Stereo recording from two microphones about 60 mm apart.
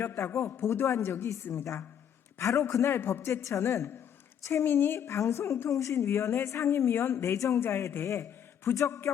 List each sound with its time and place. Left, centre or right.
0.0 s a woman's voice: left
2.4 s a woman's voice: left
3.4 s a woman's voice: left
4.7 s a woman's voice: left
5.0 s a woman's voice: left
7.3 s a man's voice: left
8.7 s speech: left